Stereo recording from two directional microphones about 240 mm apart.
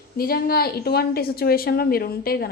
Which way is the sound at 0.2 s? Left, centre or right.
Left.